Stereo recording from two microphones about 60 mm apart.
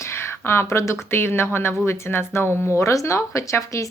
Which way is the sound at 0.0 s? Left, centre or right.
Left.